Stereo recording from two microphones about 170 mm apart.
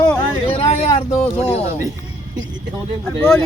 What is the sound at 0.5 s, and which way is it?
Speech, 40° left (ahead or behind).